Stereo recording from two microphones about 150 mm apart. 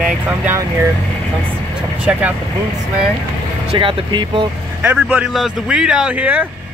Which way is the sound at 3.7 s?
35° right (ahead or behind).